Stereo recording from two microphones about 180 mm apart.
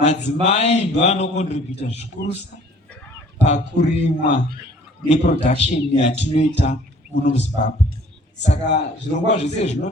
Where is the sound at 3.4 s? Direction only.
40° left (ahead or behind).